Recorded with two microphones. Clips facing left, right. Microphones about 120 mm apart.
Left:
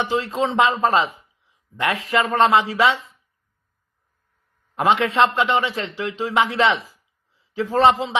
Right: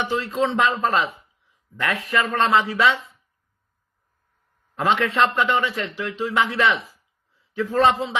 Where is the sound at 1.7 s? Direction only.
30° left (ahead or behind).